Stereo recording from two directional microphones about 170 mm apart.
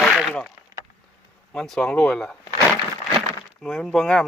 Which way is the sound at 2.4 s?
15° left (ahead or behind).